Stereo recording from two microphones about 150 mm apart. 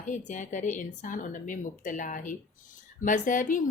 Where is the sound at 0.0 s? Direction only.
55° left (ahead or behind).